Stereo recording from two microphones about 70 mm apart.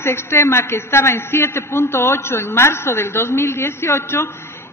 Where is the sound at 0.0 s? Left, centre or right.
Left.